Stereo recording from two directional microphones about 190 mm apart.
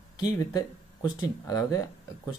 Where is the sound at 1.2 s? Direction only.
20° left (ahead or behind).